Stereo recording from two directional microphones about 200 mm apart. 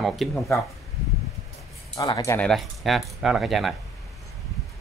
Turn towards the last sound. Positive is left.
turn(degrees=0)  # may be behind; listen again after turning